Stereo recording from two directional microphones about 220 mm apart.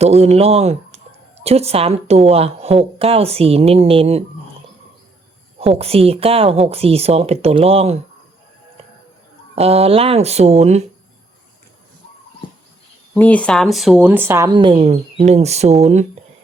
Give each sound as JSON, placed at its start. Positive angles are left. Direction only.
{"t": 0.0, "sound": "speech", "side_deg": -30}
{"t": 5.5, "sound": "speech", "side_deg": -25}
{"t": 9.6, "sound": "speech", "side_deg": -30}
{"t": 12.4, "sound": "a sound", "side_deg": 20}
{"t": 13.1, "sound": "speech", "side_deg": 5}